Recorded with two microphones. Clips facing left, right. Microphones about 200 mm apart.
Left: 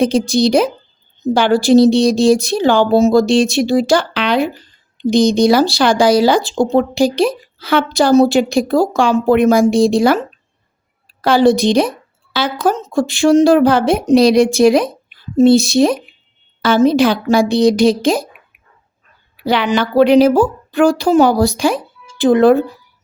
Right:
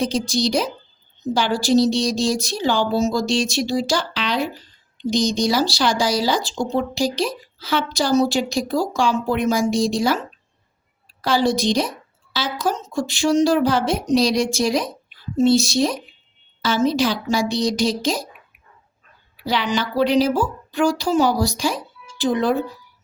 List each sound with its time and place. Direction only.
0.0 s speech: 60° left (ahead or behind)
19.5 s speech: 60° left (ahead or behind)